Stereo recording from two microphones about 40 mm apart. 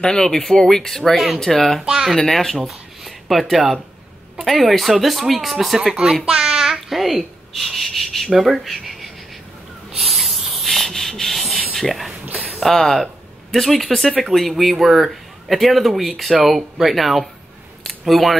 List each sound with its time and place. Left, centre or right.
0.0 s speech: centre
1.1 s speech: centre
1.4 s speech: centre
1.8 s speech: centre
2.2 s speech: centre
2.5 s a sound: centre
4.4 s speech: centre
5.8 s a child's voice: centre
6.2 s child singing: right
6.5 s speech: centre
8.3 s a child's voice: centre
9.9 s hiss: centre
11.7 s a sound: centre
12.9 s speech: centre